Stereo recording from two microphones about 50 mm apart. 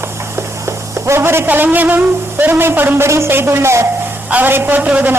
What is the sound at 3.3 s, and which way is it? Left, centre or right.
Speech, right.